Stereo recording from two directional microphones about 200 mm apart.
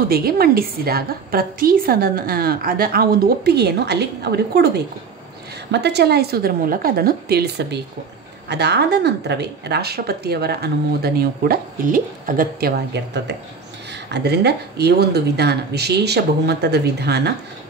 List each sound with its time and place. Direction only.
0.1 s a woman's voice: 50° right (ahead or behind)